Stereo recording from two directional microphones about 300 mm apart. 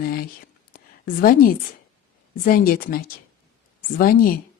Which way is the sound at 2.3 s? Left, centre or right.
Left.